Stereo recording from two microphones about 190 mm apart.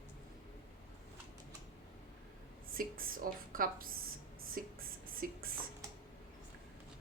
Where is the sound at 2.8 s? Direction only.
50° right (ahead or behind).